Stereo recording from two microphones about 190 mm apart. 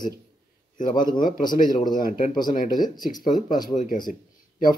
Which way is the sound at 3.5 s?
20° left (ahead or behind).